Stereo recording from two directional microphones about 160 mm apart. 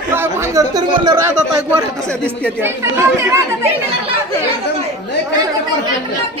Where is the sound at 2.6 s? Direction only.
15° right (ahead or behind).